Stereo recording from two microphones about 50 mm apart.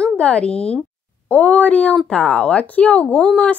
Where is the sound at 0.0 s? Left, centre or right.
Centre.